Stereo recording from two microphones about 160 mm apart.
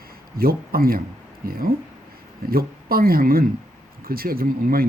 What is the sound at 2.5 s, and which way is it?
Speech, 70° right (ahead or behind).